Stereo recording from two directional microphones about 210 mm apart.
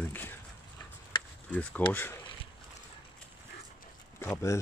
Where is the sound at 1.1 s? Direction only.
25° left (ahead or behind).